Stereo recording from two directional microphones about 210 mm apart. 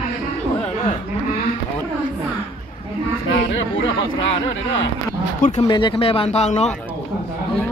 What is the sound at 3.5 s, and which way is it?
Chatter, 65° left (ahead or behind).